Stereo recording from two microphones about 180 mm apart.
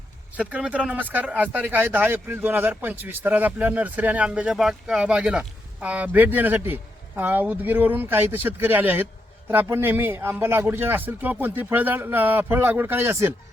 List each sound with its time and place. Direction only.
0.3 s speech: 5° right (ahead or behind)